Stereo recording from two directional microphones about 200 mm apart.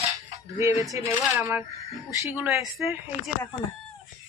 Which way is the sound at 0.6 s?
15° right (ahead or behind).